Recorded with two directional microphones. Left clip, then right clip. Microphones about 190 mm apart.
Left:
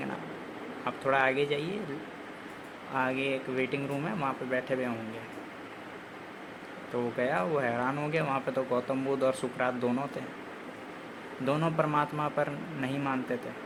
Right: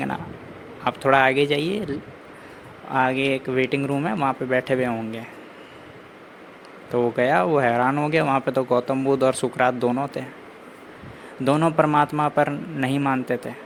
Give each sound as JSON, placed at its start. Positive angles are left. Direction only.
{"t": 0.9, "sound": "speech", "side_deg": -50}
{"t": 2.9, "sound": "speech", "side_deg": -45}
{"t": 6.9, "sound": "speech", "side_deg": -45}
{"t": 11.4, "sound": "speech", "side_deg": -45}